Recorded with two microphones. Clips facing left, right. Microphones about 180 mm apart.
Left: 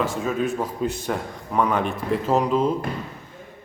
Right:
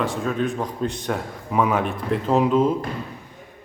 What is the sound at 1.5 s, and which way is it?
A man's voice, 5° right (ahead or behind).